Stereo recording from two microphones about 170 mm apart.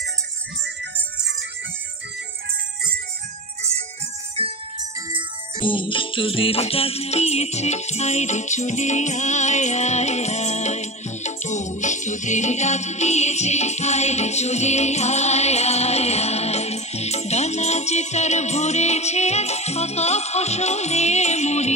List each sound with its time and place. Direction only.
4.4 s jingle bell: 30° right (ahead or behind)
5.6 s music: 30° left (ahead or behind)